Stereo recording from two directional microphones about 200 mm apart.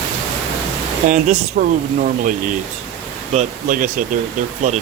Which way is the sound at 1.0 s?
40° right (ahead or behind).